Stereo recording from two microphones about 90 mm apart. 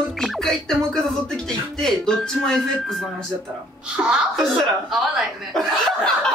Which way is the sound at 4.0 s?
25° right (ahead or behind).